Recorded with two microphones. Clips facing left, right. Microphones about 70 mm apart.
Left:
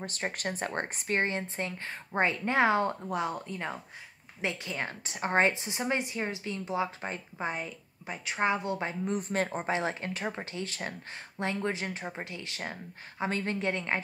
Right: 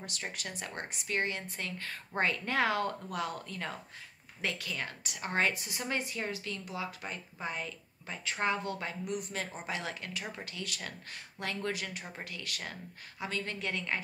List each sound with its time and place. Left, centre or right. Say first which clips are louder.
0.0 s a woman's voice: left 7 dB; left